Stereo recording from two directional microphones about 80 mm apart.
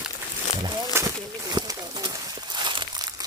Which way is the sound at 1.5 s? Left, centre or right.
Right.